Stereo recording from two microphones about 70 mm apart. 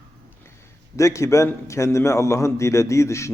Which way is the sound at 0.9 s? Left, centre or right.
Left.